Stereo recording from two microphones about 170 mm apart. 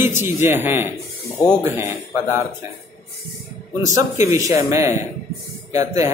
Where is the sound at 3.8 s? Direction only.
20° right (ahead or behind).